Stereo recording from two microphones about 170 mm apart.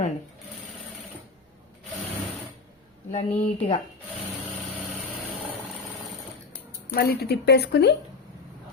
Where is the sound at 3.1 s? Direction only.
40° left (ahead or behind).